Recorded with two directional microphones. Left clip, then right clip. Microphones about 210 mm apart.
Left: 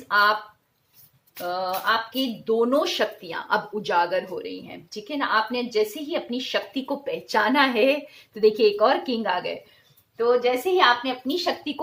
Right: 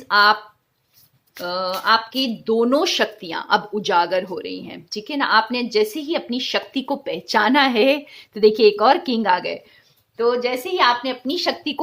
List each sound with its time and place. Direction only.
0.1 s speech: 50° right (ahead or behind)
1.4 s speech: 50° right (ahead or behind)